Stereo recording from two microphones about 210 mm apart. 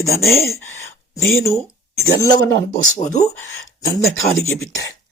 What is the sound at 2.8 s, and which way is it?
Speech, 35° left (ahead or behind).